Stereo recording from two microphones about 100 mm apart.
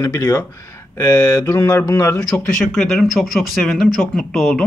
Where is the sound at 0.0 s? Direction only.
35° left (ahead or behind).